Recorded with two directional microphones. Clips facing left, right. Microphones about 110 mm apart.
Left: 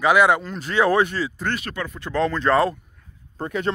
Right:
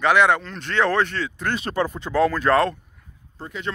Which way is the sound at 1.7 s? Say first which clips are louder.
Right 7 dB; 35° right (ahead or behind).